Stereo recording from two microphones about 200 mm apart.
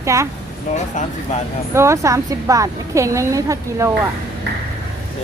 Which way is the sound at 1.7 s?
15° right (ahead or behind).